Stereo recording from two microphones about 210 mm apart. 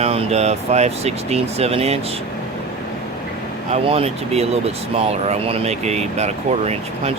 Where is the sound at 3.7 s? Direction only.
25° right (ahead or behind).